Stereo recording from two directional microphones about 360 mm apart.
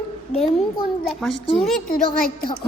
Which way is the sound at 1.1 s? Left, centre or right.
Centre.